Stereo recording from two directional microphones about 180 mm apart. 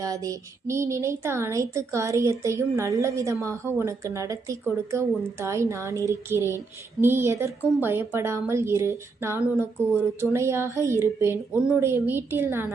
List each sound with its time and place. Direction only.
0.0 s speech: 20° right (ahead or behind)